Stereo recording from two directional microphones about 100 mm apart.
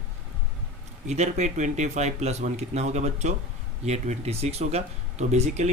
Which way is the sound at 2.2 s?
90° right.